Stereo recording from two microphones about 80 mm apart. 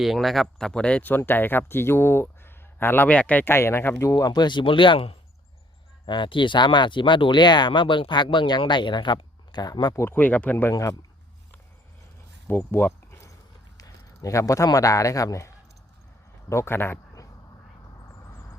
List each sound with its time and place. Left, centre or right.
0.0 s speech: centre; by 4.0 s left
4.0 s speech: left
4.3 s speech: left
6.1 s speech: left
9.9 s speech: left
10.2 s speech: left
10.7 s speech: left
12.5 s a sound: left
13.7 s speech: left
16.5 s speech: left